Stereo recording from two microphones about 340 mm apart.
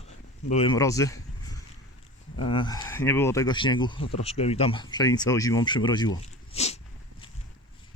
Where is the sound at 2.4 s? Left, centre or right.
Centre.